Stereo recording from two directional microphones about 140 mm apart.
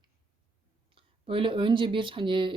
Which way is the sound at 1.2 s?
40° right (ahead or behind).